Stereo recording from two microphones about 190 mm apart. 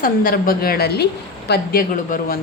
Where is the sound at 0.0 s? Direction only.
50° left (ahead or behind).